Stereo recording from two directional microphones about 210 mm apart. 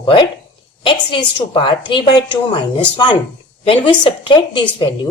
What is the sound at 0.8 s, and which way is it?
Speech, 25° left (ahead or behind).